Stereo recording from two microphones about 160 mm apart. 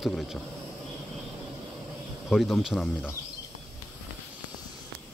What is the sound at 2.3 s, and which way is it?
Speech, centre (ahead or behind).